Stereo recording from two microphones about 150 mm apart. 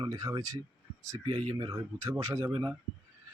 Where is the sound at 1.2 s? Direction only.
40° right (ahead or behind).